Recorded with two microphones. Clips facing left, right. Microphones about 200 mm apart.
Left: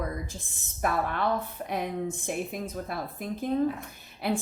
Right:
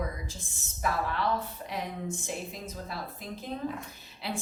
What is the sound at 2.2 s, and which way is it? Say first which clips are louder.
A woman's voice: left 5 dB; 55° left (ahead or behind).